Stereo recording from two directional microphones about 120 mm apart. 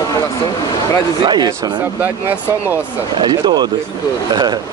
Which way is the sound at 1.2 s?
40° right (ahead or behind).